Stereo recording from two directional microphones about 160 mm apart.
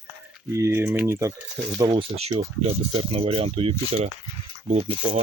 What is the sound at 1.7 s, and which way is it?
Speech, 25° right (ahead or behind).